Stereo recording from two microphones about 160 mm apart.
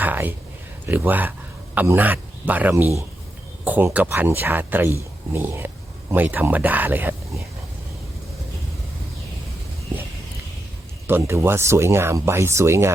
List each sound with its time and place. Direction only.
0.0 s a sound: 10° right (ahead or behind)
0.9 s speech: 10° right (ahead or behind)
11.0 s speech: 15° right (ahead or behind)